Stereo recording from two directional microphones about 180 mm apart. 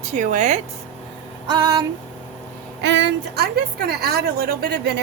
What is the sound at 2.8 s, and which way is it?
A woman's voice, 80° right.